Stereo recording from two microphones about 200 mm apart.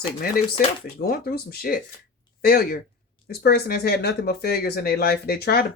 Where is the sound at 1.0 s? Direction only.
50° left (ahead or behind).